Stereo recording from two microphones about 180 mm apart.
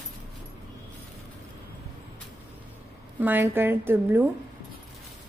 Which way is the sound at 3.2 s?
10° right (ahead or behind).